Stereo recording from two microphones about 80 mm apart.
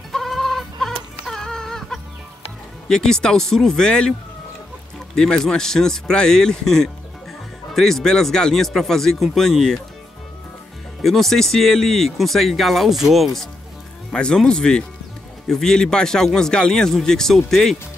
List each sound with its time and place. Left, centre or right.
0.1 s chicken: centre
2.9 s a man's voice: centre
5.1 s a man's voice: centre
11.0 s a man's voice: centre